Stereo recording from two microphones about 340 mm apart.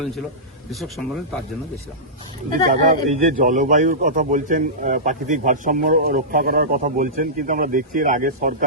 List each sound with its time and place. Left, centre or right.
0.7 s speech: centre
2.5 s speech: right